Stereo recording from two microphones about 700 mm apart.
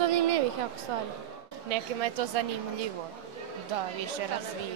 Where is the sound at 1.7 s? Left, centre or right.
Right.